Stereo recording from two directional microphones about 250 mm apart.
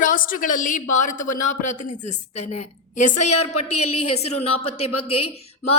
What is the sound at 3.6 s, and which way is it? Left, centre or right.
Speech, left.